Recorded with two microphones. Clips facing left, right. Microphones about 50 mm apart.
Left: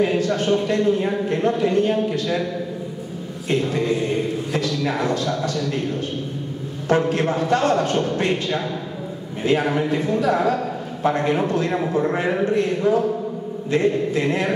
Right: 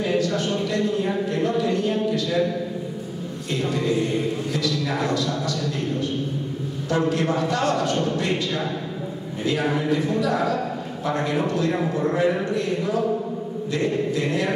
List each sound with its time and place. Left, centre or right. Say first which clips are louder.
0.0 s a sound: left 3 dB; left
3.4 s a man's voice: left 3 dB; left
6.9 s a man's voice: left 3 dB; left